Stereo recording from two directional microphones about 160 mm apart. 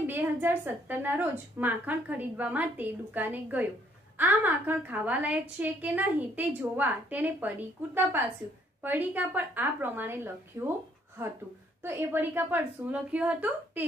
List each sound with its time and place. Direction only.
0.0 s a woman's voice: 10° right (ahead or behind)
11.8 s a woman's voice: 15° right (ahead or behind)